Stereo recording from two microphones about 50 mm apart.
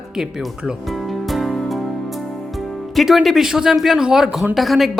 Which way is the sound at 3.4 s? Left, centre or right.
Centre.